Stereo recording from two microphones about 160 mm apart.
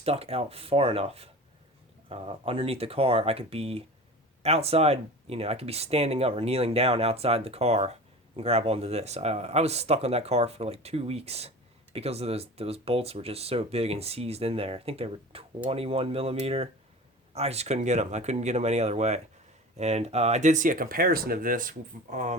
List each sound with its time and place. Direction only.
0.0 s speech: 40° right (ahead or behind)